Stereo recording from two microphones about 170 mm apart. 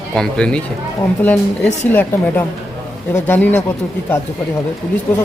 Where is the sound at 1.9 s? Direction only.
10° left (ahead or behind).